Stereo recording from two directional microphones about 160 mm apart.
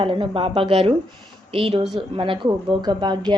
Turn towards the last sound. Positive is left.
turn(degrees=-25)  # may be behind; listen again after turning